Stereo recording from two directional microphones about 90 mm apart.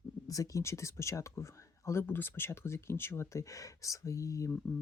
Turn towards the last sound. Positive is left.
turn(degrees=35)  # may be behind; listen again after turning